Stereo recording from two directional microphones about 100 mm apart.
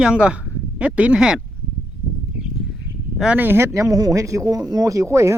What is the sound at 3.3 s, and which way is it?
Speech, 20° right (ahead or behind).